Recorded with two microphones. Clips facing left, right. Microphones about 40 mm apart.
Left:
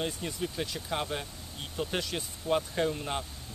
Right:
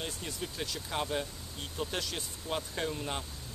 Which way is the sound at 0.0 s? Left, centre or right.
Centre.